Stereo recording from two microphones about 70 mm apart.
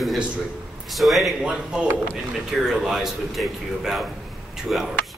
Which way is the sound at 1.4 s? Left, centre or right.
Centre.